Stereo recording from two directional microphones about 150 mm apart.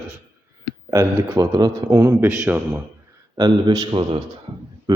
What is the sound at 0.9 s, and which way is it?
Speech, 15° right (ahead or behind).